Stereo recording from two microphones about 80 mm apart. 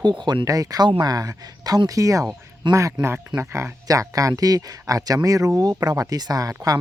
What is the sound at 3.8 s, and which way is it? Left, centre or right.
Speech, right.